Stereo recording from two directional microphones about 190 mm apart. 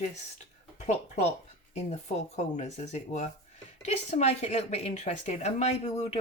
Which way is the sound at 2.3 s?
35° left (ahead or behind).